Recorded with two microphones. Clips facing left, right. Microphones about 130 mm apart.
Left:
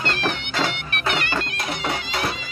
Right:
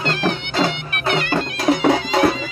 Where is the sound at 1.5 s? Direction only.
90° right.